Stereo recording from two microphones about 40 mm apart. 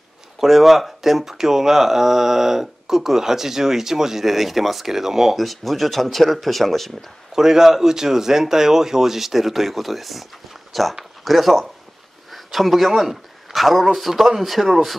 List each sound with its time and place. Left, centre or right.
0.4 s speech: centre
5.4 s speech: centre
7.3 s speech: centre